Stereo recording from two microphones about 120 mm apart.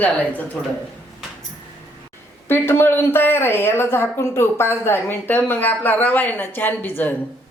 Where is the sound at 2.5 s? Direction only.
20° left (ahead or behind).